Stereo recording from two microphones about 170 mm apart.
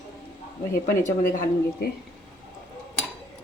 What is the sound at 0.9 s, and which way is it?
Speech, 50° left (ahead or behind).